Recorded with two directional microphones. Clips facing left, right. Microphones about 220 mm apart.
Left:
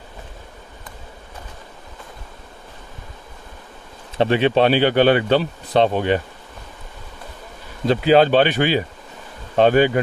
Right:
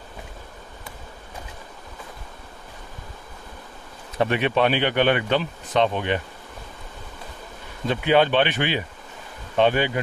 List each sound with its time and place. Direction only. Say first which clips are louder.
4.2 s speech: left 5 dB; 30° left (ahead or behind)
7.8 s speech: left 5 dB; 35° left (ahead or behind)